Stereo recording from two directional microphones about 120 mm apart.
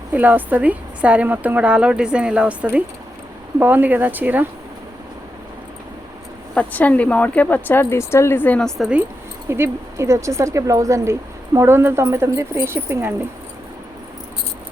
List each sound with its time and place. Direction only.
0.1 s speech: 15° right (ahead or behind)
6.5 s speech: 10° left (ahead or behind)
9.5 s speech: 20° right (ahead or behind)